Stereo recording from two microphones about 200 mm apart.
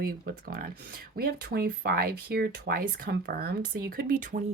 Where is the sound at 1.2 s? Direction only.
50° right (ahead or behind).